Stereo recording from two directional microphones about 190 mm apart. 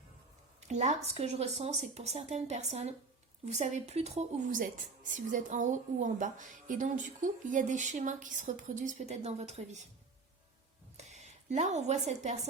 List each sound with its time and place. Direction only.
0.6 s a woman's voice: 35° right (ahead or behind)
10.9 s speech: 35° right (ahead or behind)